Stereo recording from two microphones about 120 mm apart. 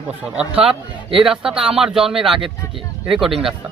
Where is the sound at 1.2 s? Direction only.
5° right (ahead or behind).